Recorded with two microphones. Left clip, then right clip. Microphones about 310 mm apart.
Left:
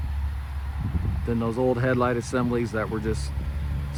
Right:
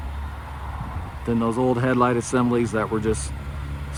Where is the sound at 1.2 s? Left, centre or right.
Right.